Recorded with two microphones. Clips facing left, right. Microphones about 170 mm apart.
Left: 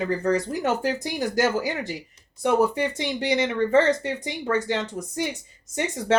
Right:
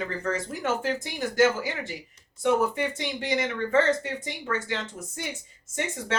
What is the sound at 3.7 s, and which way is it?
Speech, 40° left (ahead or behind).